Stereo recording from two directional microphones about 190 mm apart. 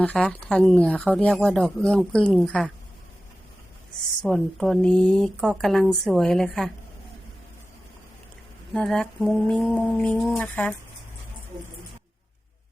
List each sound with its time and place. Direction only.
0.0 s speech: 5° left (ahead or behind)
4.2 s speech: centre (ahead or behind)
8.7 s speech: centre (ahead or behind)